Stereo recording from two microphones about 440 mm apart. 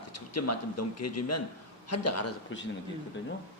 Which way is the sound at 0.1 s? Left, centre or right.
Left.